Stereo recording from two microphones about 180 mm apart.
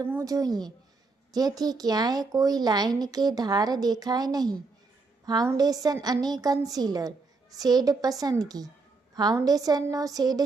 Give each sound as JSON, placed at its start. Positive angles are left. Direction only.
{"t": 0.0, "sound": "speech", "side_deg": -15}